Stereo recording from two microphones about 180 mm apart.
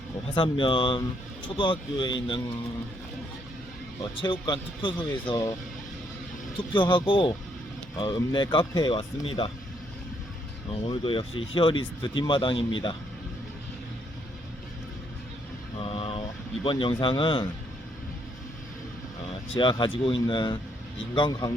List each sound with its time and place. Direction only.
0.3 s speech: 30° left (ahead or behind)
4.1 s speech: 30° left (ahead or behind)
6.7 s speech: 25° left (ahead or behind)
10.7 s speech: 30° left (ahead or behind)
15.8 s vehicle: 30° left (ahead or behind)
16.6 s speech: 30° left (ahead or behind)
19.5 s speech: 25° left (ahead or behind)